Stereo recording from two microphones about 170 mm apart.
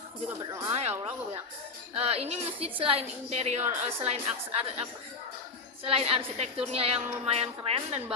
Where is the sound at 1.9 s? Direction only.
35° right (ahead or behind).